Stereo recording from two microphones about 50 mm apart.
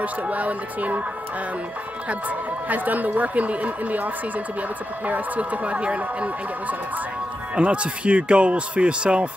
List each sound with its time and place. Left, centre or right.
0.0 s speech: right
2.0 s speech: right